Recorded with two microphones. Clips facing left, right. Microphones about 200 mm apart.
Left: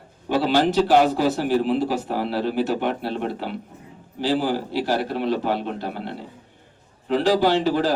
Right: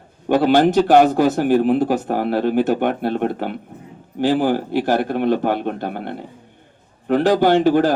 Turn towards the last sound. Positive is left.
turn(degrees=-50)  # may be behind; listen again after turning